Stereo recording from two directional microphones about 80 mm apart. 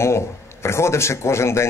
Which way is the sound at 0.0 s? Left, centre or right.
Left.